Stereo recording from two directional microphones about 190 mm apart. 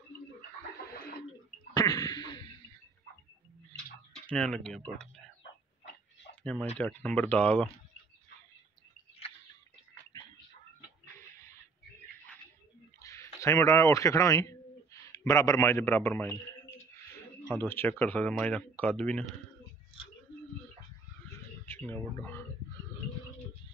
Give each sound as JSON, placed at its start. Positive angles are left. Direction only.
{"t": 1.7, "sound": "throat clearing", "side_deg": 20}
{"t": 4.1, "sound": "speech", "side_deg": 5}
{"t": 6.4, "sound": "speech", "side_deg": 5}
{"t": 10.1, "sound": "a sound", "side_deg": 20}
{"t": 13.0, "sound": "speech", "side_deg": 15}
{"t": 17.5, "sound": "speech", "side_deg": 10}
{"t": 21.6, "sound": "speech", "side_deg": 10}